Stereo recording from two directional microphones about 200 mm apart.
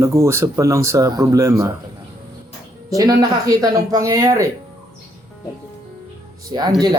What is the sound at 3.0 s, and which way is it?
Speech, 15° right (ahead or behind).